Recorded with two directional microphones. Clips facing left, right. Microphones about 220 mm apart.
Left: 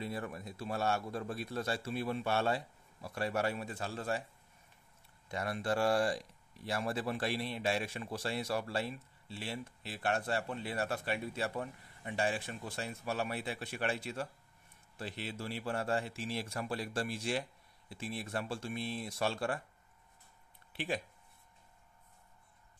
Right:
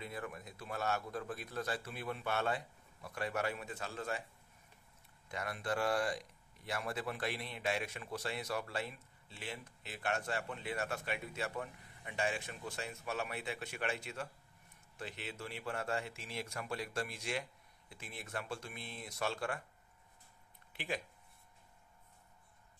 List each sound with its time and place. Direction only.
0.0 s a man's voice: 30° left (ahead or behind)
5.3 s speech: 30° left (ahead or behind)